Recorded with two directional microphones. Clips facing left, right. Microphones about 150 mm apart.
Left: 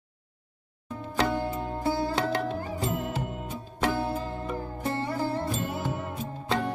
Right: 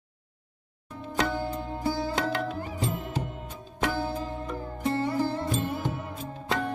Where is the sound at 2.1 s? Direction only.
30° left (ahead or behind).